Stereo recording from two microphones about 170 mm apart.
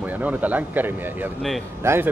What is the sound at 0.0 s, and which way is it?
A man's voice, 10° right (ahead or behind).